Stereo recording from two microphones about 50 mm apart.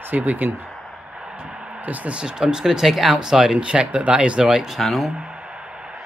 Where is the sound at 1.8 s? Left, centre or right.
Right.